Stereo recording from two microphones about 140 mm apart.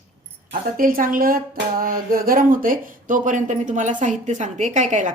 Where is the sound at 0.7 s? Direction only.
80° right.